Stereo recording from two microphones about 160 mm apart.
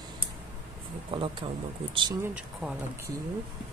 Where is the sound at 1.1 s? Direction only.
35° right (ahead or behind).